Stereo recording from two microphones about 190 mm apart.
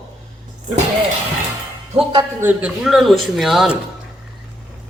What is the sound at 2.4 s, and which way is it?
A woman's voice, 10° right (ahead or behind).